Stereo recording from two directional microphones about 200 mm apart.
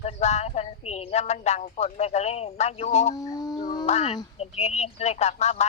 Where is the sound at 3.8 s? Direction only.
35° left (ahead or behind).